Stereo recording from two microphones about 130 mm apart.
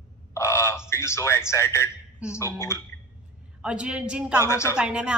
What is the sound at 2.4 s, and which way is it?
Speech, 20° left (ahead or behind).